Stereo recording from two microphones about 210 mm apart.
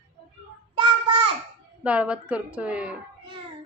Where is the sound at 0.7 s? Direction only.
25° right (ahead or behind).